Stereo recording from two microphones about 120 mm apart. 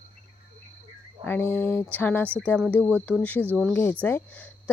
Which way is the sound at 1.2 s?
15° left (ahead or behind).